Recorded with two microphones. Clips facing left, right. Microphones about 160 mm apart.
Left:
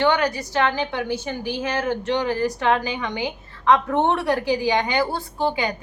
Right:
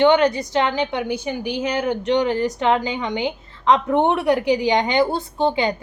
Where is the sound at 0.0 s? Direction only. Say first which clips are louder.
Right 5 dB; 20° right (ahead or behind).